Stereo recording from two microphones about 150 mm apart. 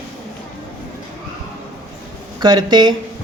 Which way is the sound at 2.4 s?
30° right (ahead or behind).